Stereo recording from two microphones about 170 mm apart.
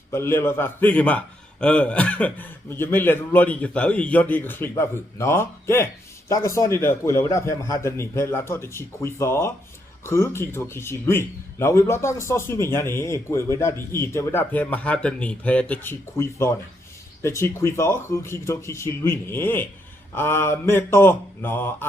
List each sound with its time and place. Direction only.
0.1 s a man's voice: 15° left (ahead or behind)